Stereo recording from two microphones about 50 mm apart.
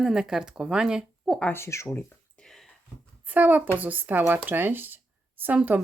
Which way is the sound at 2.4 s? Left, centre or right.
Centre.